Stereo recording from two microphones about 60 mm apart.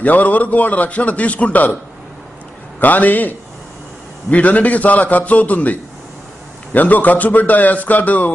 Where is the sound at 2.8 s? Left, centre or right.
Left.